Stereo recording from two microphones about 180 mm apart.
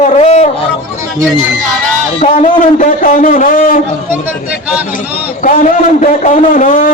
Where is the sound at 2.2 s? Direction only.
45° left (ahead or behind).